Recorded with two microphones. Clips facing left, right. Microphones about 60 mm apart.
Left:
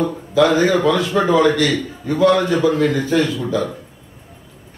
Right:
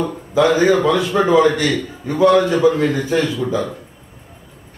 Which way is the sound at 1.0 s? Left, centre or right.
Centre.